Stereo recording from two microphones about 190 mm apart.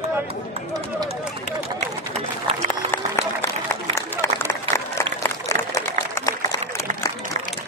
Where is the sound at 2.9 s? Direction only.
10° left (ahead or behind).